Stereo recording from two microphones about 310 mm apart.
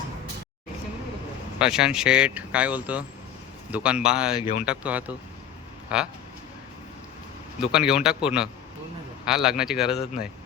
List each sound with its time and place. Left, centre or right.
1.5 s speech: centre
4.4 s speech: centre
4.6 s speech: centre
7.7 s speech: centre